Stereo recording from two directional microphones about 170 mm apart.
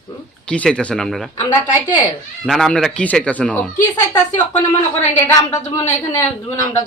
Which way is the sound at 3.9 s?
20° left (ahead or behind).